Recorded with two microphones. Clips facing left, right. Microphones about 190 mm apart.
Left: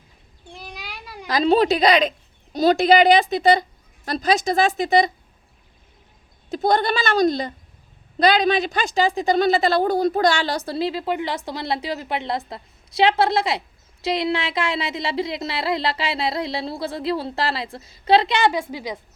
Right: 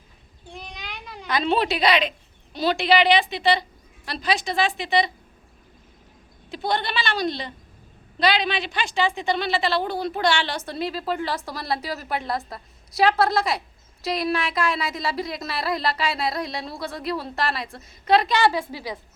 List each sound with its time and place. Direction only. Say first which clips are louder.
0.6 s a sound: left 3 dB; 5° left (ahead or behind)
1.3 s a woman's voice: left 5 dB; 40° left (ahead or behind)
6.5 s a woman's voice: left 6 dB; 45° left (ahead or behind); by 18.9 s 20° left (ahead or behind)